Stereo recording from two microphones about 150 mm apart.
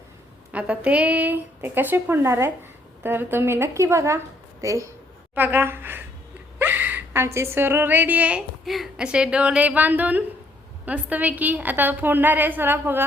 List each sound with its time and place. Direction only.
0.5 s a woman's voice: 10° right (ahead or behind)